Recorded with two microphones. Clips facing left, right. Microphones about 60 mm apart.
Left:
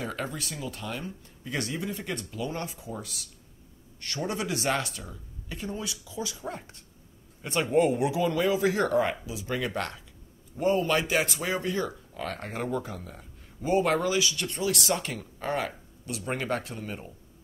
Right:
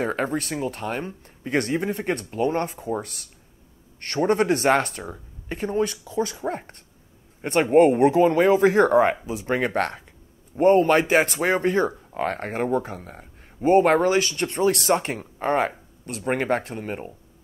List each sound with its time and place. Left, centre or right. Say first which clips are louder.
0.0 s speech: right 9 dB; right